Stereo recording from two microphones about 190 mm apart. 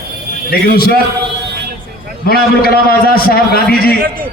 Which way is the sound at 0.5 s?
55° left (ahead or behind).